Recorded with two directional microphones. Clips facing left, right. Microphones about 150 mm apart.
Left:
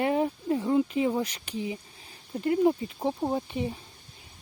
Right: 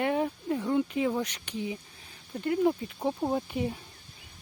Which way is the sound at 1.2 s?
35° left (ahead or behind).